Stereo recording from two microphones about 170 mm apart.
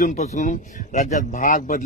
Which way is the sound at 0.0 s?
45° left (ahead or behind).